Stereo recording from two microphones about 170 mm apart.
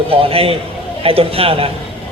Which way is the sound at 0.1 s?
35° right (ahead or behind).